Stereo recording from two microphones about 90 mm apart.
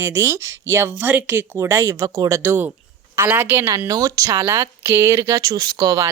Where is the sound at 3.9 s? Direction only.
40° right (ahead or behind).